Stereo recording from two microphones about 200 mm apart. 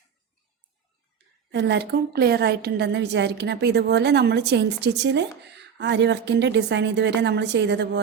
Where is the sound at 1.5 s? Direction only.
60° right (ahead or behind).